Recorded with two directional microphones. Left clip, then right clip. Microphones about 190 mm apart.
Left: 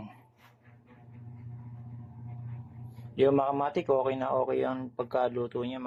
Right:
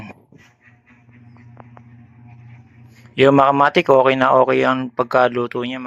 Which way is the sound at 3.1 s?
15° right (ahead or behind).